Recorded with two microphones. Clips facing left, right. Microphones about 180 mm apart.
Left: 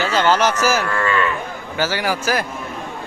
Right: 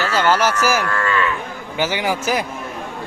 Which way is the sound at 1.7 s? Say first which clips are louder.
Even; 20° right (ahead or behind).